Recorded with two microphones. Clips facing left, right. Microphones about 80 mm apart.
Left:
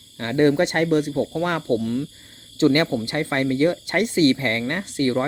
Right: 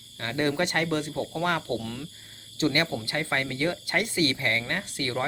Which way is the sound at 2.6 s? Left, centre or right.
Left.